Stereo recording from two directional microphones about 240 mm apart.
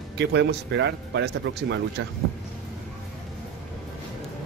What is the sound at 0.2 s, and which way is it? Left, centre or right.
Speech, right.